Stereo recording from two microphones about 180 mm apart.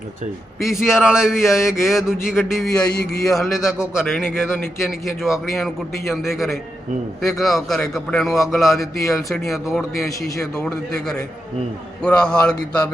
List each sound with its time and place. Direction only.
0.6 s a man's voice: centre (ahead or behind)
10.0 s a man's voice: 20° left (ahead or behind)
10.3 s a man's voice: 5° left (ahead or behind)